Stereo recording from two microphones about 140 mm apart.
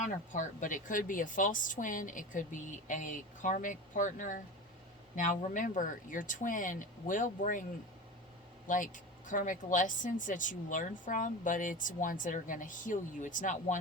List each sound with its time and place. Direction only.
0.0 s a woman's voice: 65° left (ahead or behind)
8.6 s a woman's voice: 70° left (ahead or behind)